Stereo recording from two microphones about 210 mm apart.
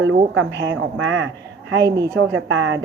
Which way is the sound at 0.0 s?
65° right (ahead or behind).